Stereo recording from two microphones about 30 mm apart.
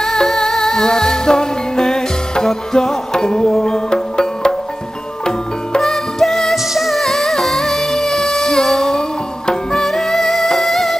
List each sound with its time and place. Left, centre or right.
0.0 s music: centre
5.8 s music: centre
6.5 s music: centre
7.0 s music: centre
9.8 s music: centre